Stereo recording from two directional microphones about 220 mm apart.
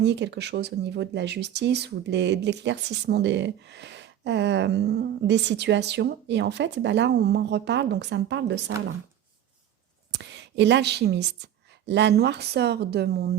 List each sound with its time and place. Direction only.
0.0 s speech: 50° right (ahead or behind)
10.1 s speech: 55° right (ahead or behind)